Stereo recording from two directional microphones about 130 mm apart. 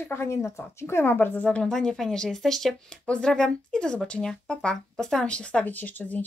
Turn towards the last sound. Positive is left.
turn(degrees=15)  # may be behind; listen again after turning